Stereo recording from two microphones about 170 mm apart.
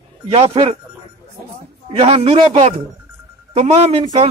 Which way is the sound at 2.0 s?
35° right (ahead or behind).